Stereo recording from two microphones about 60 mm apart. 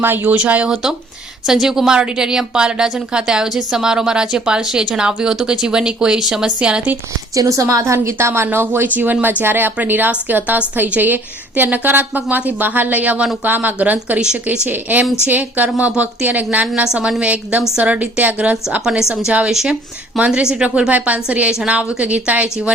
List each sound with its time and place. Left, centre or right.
0.0 s a woman's voice: right
1.5 s a woman's voice: centre
6.6 s a woman's voice: centre
7.3 s a woman's voice: right; by 14.7 s centre
14.7 s a woman's voice: right
16.8 s a woman's voice: centre
19.5 s a woman's voice: centre